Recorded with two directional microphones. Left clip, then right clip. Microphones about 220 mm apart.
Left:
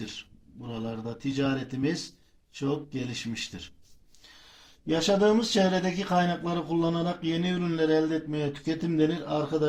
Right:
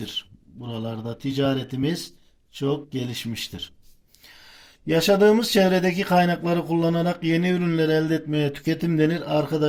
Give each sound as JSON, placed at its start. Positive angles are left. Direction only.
{"t": 0.0, "sound": "speech", "side_deg": -45}
{"t": 4.9, "sound": "speech", "side_deg": -40}